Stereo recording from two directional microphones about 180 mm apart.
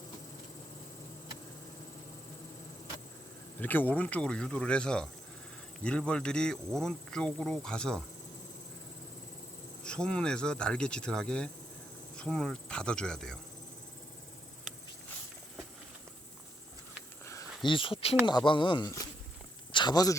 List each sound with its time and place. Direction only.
3.6 s speech: 10° left (ahead or behind)
9.8 s speech: 5° left (ahead or behind)
17.7 s speech: 30° left (ahead or behind)